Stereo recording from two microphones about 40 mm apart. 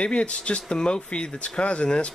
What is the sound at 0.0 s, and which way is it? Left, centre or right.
Speech, left.